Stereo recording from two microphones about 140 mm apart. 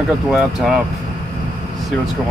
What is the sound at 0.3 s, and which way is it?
Speech, 5° right (ahead or behind).